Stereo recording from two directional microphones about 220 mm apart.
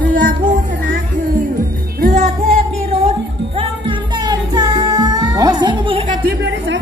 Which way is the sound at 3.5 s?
20° right (ahead or behind).